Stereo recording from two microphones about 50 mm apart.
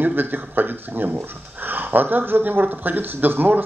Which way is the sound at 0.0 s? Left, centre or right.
Right.